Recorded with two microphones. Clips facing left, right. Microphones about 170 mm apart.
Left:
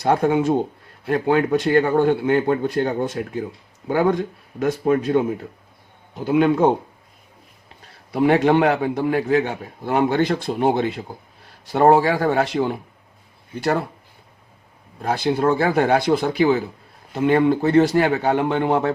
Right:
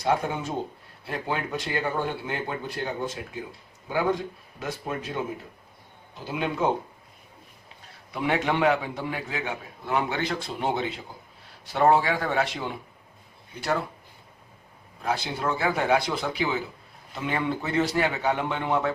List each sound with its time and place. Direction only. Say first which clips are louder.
0.0 s speech: left 8 dB; 55° left (ahead or behind)
8.1 s a man's voice: left 10 dB; 45° left (ahead or behind)
9.4 s a man's voice: left 8 dB; 35° left (ahead or behind)
9.9 s a man's voice: left 8 dB; 50° left (ahead or behind)
15.1 s a man's voice: left 9 dB; 50° left (ahead or behind)